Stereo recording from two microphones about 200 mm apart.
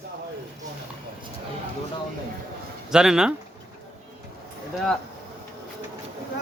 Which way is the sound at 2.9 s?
5° right (ahead or behind).